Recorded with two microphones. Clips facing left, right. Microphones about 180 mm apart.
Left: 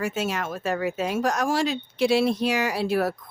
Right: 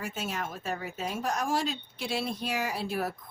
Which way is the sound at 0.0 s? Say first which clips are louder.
Left 8 dB; 85° left.